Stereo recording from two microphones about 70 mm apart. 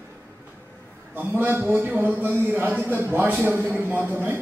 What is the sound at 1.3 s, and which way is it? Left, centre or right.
Speech, right.